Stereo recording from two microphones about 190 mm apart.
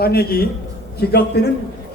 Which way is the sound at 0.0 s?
55° left (ahead or behind).